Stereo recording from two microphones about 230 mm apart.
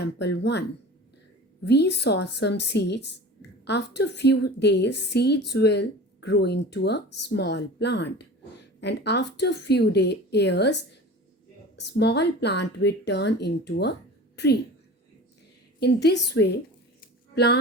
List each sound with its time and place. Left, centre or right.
0.0 s a woman's voice: left
1.6 s a woman's voice: left
11.8 s a woman's voice: left
15.8 s a woman's voice: left
17.0 s a sound: left